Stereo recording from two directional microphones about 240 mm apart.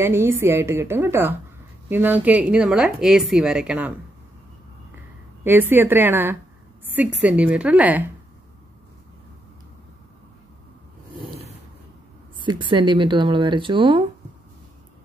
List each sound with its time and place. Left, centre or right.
0.0 s a woman's voice: centre
5.4 s a woman's voice: centre
12.4 s speech: centre